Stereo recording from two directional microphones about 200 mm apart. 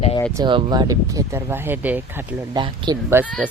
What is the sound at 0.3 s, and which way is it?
Speech, 20° right (ahead or behind).